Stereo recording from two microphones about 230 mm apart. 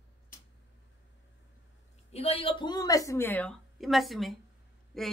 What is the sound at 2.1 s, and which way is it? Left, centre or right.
A woman's voice, left.